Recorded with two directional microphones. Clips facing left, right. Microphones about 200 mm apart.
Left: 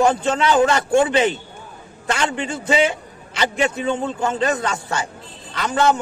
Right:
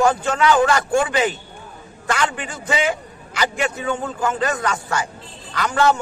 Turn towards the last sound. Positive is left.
turn(degrees=25)  # may be behind; listen again after turning